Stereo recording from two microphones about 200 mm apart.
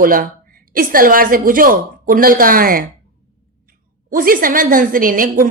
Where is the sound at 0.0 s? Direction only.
45° right (ahead or behind).